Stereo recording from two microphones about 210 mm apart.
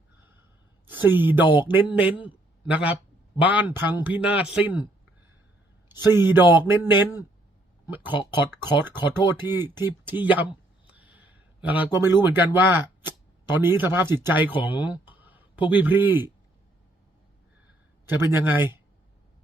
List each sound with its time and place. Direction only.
0.9 s speech: 10° right (ahead or behind)
5.9 s speech: 10° right (ahead or behind)
8.1 s speech: 20° left (ahead or behind)
9.0 s speech: 10° right (ahead or behind)
10.9 s a sound: 5° right (ahead or behind)
12.5 s speech: 10° right (ahead or behind)
18.0 s speech: 10° right (ahead or behind)